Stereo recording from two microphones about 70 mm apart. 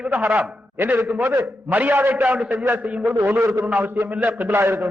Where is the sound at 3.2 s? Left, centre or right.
Right.